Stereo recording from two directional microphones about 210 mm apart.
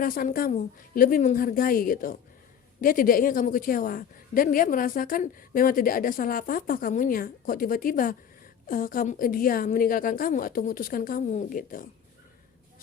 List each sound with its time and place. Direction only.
0.0 s a woman's voice: 40° left (ahead or behind)